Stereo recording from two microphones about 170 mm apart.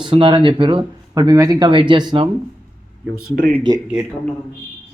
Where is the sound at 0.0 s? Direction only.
30° right (ahead or behind).